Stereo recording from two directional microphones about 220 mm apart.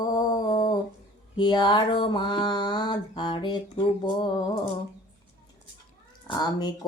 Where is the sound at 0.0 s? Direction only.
15° left (ahead or behind).